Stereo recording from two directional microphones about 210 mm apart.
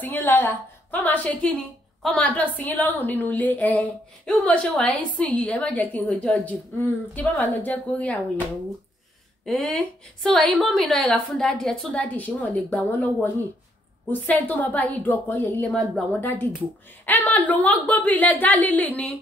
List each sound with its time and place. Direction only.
0.0 s a woman's voice: 10° left (ahead or behind)
9.4 s a woman's voice: centre (ahead or behind)